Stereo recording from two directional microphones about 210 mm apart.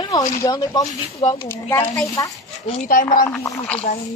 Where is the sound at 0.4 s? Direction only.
15° left (ahead or behind).